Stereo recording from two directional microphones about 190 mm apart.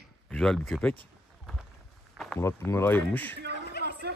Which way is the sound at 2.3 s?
15° left (ahead or behind).